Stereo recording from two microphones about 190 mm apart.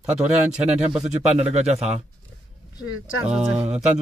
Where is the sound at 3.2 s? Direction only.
5° right (ahead or behind).